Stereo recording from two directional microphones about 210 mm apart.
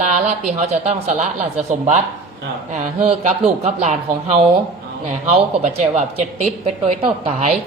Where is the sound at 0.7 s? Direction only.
30° right (ahead or behind).